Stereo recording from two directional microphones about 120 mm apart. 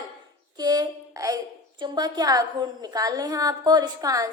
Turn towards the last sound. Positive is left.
turn(degrees=-30)  # may be behind; listen again after turning